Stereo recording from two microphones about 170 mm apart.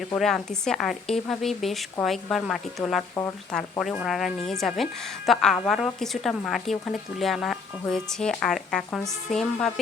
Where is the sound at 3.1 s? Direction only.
15° left (ahead or behind).